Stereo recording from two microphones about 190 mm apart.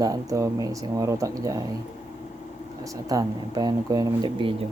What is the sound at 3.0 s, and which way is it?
Speech, 20° right (ahead or behind).